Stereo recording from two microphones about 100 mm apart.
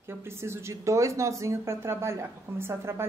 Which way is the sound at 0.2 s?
25° right (ahead or behind).